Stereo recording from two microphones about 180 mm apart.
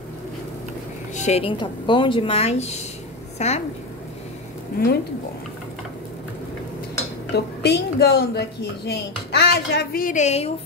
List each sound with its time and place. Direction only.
1.1 s a woman's voice: 40° left (ahead or behind)
1.6 s a woman's voice: 25° left (ahead or behind)
7.3 s speech: 65° left (ahead or behind); by 10.5 s 35° left (ahead or behind)